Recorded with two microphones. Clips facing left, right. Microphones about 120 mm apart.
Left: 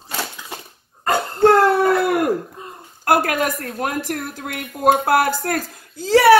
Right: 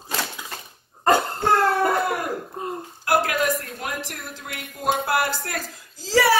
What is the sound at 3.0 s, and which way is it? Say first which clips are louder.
Speech: left 3 dB; 50° left (ahead or behind).